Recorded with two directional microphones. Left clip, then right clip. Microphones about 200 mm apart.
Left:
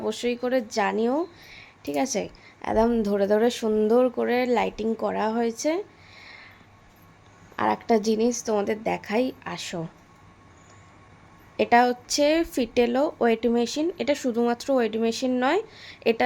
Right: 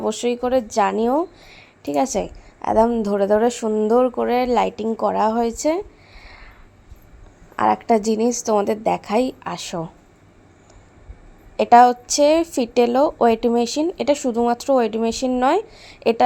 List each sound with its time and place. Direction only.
0.0 s a woman's voice: 20° right (ahead or behind)
7.5 s a woman's voice: 15° right (ahead or behind)
11.5 s a woman's voice: 20° right (ahead or behind)